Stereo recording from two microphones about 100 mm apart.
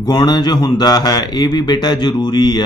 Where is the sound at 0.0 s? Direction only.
40° left (ahead or behind).